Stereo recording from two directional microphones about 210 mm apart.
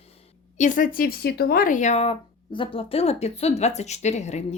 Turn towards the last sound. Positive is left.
turn(degrees=30)  # may be behind; listen again after turning